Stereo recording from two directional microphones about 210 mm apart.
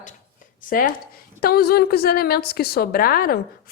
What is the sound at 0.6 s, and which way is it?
A woman's voice, 40° left (ahead or behind).